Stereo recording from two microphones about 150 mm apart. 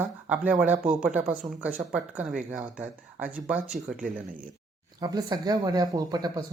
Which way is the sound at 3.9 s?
60° right (ahead or behind).